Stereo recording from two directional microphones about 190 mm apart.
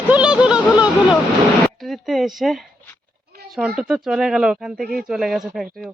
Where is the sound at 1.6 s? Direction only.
Centre (ahead or behind).